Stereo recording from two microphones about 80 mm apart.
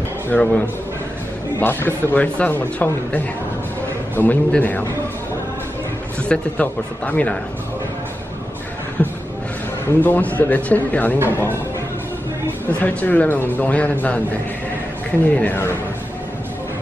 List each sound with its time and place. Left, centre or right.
0.3 s speech: centre
1.6 s speech: left
6.2 s speech: centre
10.0 s speech: left
15.2 s speech: centre